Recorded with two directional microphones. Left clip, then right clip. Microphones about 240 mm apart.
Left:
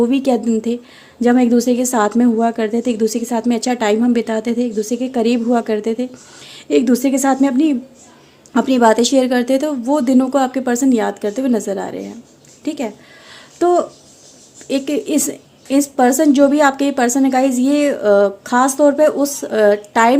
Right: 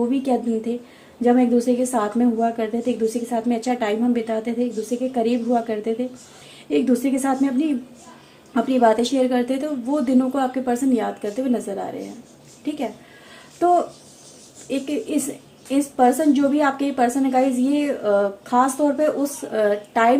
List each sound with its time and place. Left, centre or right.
0.1 s a woman's voice: left